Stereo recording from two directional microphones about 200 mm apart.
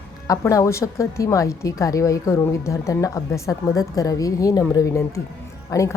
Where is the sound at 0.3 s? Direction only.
15° left (ahead or behind).